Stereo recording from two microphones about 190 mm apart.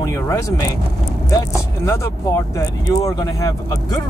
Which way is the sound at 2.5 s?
15° left (ahead or behind).